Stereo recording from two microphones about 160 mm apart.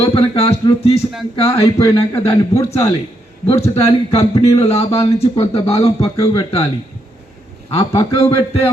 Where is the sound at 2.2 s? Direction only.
40° left (ahead or behind).